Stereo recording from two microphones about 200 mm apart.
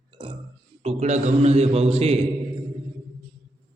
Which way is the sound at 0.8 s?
35° right (ahead or behind).